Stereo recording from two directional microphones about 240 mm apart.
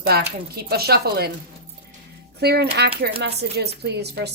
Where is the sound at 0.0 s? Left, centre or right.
Right.